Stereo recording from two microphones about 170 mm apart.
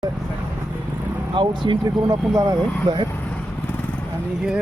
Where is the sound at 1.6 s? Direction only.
25° right (ahead or behind).